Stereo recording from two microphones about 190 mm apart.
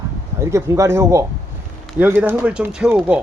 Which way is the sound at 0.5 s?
15° right (ahead or behind).